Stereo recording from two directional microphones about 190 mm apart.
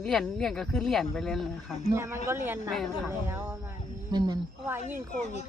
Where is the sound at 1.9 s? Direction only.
15° right (ahead or behind).